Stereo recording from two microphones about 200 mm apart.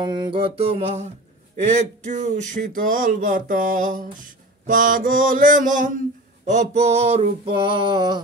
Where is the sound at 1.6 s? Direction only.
35° right (ahead or behind).